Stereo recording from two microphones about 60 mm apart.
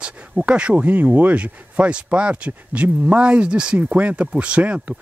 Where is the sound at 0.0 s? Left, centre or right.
Centre.